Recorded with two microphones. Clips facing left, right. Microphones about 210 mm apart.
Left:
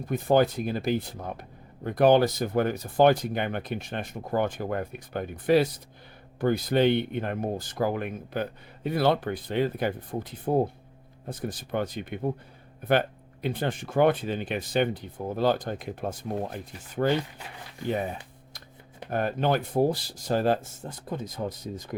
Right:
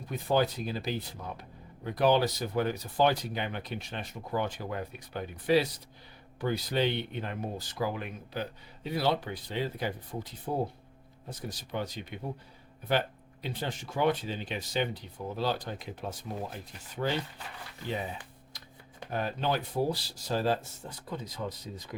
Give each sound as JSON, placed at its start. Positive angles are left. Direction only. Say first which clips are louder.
{"t": 0.1, "sound": "speech", "louder": "left 6 dB", "side_deg": 50}